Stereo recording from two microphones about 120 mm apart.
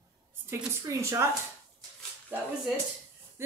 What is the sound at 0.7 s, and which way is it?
Speech, 25° right (ahead or behind).